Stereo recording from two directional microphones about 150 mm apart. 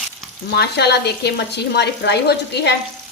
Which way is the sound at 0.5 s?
90° left.